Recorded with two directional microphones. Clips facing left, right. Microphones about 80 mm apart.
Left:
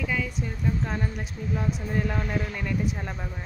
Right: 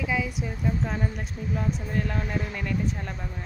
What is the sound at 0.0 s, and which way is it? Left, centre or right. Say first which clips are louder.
Speech: right 1 dB; centre.